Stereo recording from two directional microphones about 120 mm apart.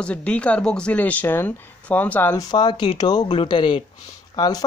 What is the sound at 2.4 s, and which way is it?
Speech, 35° left (ahead or behind).